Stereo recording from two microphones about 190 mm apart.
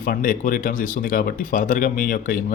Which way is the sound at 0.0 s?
45° left (ahead or behind).